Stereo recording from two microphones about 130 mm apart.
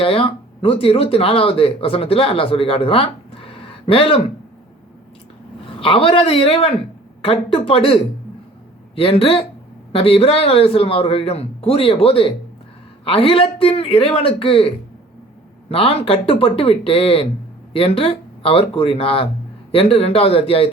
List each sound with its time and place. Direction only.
0.0 s speech: 45° left (ahead or behind)
5.6 s speech: 45° left (ahead or behind)
15.7 s speech: 45° left (ahead or behind)